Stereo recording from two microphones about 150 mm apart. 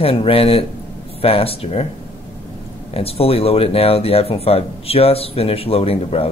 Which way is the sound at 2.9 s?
40° left (ahead or behind).